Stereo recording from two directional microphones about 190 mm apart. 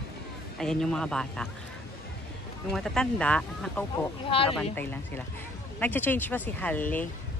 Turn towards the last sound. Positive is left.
turn(degrees=10)  # may be behind; listen again after turning